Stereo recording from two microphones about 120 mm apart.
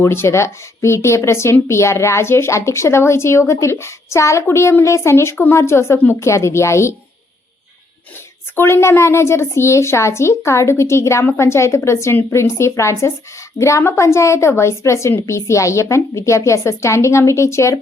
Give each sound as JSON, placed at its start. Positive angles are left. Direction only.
{"t": 0.0, "sound": "speech", "side_deg": 20}
{"t": 8.5, "sound": "speech", "side_deg": 20}